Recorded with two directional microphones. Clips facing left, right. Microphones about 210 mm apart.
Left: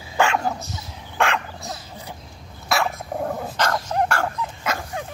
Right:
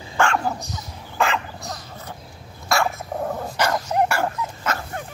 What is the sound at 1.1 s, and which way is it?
Dog, centre (ahead or behind).